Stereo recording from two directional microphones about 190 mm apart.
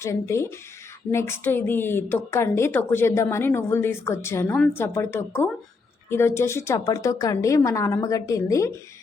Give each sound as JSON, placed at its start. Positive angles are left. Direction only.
{"t": 0.0, "sound": "a woman's voice", "side_deg": 15}